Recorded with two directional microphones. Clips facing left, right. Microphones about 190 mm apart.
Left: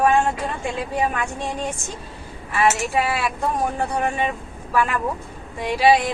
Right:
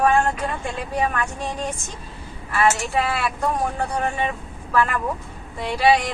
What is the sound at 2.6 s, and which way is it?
Speech, 10° left (ahead or behind).